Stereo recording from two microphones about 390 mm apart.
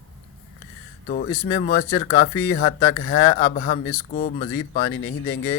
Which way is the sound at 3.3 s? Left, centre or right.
Left.